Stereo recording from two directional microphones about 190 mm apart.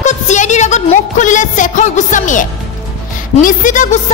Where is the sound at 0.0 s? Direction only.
40° left (ahead or behind).